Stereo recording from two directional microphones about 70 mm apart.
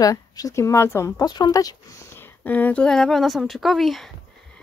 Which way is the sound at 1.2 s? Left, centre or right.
Left.